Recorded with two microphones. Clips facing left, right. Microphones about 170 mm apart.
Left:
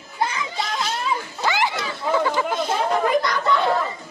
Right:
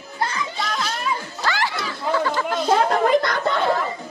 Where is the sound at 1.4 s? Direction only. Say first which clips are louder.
Left 3 dB; 20° left (ahead or behind).